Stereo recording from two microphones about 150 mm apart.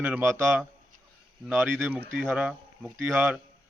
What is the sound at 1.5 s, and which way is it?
A man's voice, 10° right (ahead or behind).